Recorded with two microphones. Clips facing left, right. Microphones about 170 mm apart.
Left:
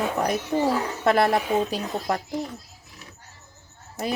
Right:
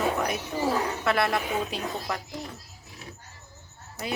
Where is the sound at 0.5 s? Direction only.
35° left (ahead or behind).